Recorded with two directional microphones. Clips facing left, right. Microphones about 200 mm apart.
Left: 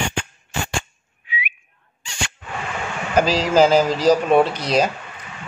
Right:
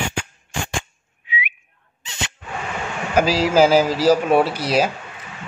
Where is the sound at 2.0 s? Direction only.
20° right (ahead or behind).